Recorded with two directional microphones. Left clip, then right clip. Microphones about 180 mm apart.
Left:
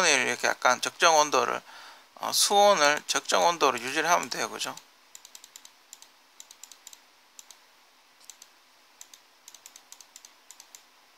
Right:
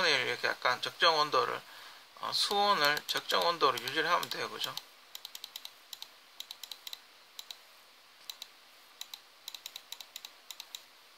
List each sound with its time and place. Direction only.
0.0 s speech: 45° left (ahead or behind)
5.9 s typing: 30° right (ahead or behind)